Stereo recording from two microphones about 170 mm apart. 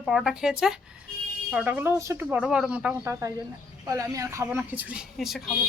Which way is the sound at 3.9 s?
20° right (ahead or behind).